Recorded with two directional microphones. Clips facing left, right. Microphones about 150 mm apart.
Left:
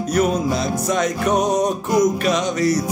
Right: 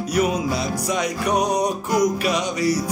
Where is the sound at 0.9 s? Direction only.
10° right (ahead or behind).